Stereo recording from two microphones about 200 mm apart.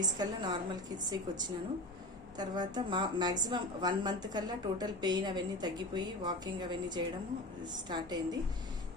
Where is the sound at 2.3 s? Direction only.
20° right (ahead or behind).